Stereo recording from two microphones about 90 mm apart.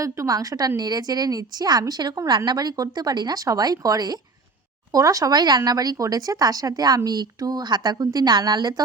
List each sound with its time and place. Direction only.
0.0 s speech: 40° right (ahead or behind)